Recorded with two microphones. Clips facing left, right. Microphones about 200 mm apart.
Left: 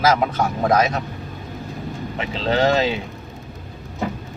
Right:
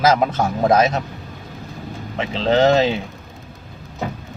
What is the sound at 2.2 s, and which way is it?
Speech, 25° right (ahead or behind).